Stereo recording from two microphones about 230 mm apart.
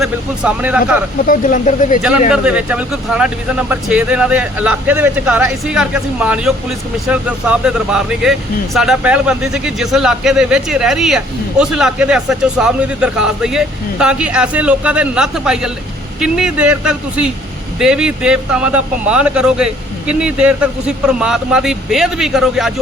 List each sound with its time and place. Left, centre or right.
0.0 s speech: centre
1.2 s speech: left
2.3 s speech: centre